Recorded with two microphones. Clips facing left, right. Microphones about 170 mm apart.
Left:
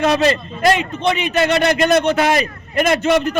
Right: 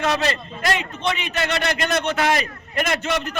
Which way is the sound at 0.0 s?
15° left (ahead or behind).